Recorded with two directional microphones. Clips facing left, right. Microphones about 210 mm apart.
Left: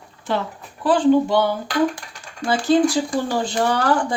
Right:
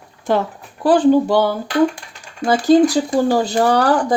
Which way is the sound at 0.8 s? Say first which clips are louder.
Right 3 dB; 40° right (ahead or behind).